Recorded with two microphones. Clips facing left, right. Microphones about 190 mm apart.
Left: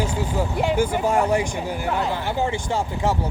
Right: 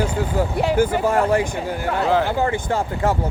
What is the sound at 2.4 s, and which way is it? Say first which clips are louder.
Speech: right 3 dB; 55° right (ahead or behind).